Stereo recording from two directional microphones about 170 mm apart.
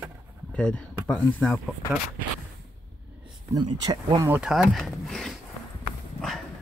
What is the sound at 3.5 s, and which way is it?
Speech, 25° right (ahead or behind).